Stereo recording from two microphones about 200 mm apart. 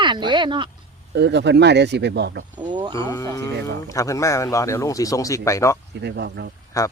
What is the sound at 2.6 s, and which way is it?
Speech, 20° right (ahead or behind).